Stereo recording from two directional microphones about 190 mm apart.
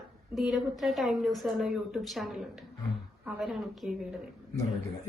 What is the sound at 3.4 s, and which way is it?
Speech, centre (ahead or behind).